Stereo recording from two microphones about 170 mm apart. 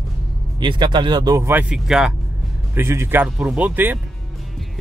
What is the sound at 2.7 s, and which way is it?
Speech, 15° right (ahead or behind).